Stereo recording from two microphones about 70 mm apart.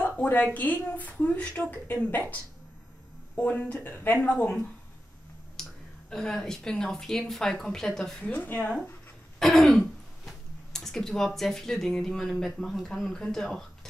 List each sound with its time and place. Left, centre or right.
0.0 s a sound: left
0.6 s a woman's voice: left
3.3 s a woman's voice: left
5.6 s speech: centre
8.2 s a woman's voice: left
9.4 s speech: centre